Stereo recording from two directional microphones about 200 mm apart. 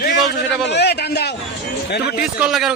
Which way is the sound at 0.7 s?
55° left (ahead or behind).